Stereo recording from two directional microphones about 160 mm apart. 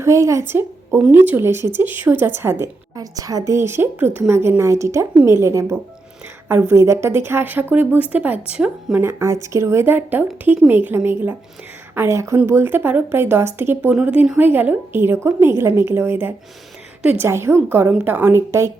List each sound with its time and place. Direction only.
0.0 s a woman's voice: 20° right (ahead or behind)